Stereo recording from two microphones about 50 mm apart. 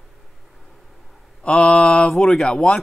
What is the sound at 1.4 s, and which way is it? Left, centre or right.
Speech, centre.